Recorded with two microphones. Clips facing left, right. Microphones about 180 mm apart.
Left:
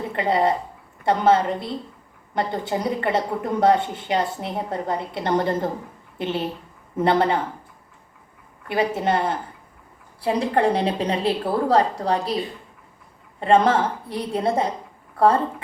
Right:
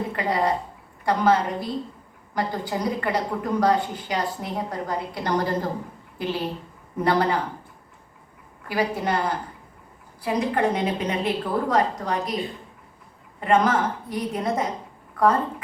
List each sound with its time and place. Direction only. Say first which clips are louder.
0.2 s a woman's voice: left 4 dB; 25° left (ahead or behind)
8.6 s a woman's voice: left 3 dB; 25° left (ahead or behind)
13.4 s a woman's voice: left 3 dB; 30° left (ahead or behind)